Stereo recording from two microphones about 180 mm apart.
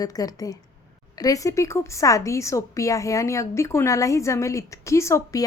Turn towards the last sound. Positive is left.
turn(degrees=15)  # may be behind; listen again after turning